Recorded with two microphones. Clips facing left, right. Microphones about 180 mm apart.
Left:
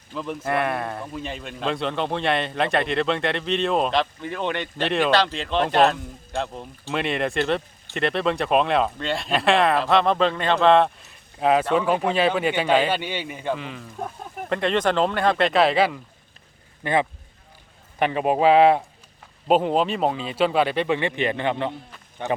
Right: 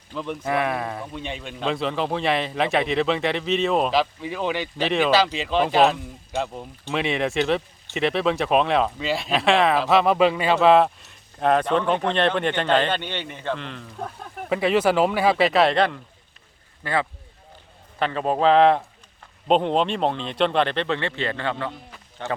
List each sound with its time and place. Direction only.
0.1 s a man's voice: centre (ahead or behind)
14.5 s a man's voice: 5° right (ahead or behind)
16.8 s a man's voice: 20° left (ahead or behind)